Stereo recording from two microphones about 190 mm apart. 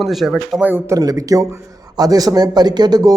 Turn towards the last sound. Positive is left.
turn(degrees=-20)  # may be behind; listen again after turning